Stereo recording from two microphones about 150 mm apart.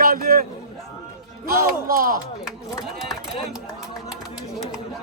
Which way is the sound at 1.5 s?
75° right (ahead or behind).